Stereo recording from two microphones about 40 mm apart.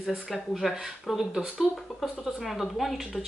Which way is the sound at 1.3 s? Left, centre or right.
Centre.